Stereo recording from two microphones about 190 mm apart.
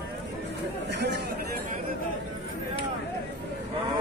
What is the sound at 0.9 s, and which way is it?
Chatter, 65° right (ahead or behind).